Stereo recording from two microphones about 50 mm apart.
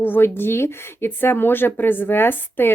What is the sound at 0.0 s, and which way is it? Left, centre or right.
Speech, left.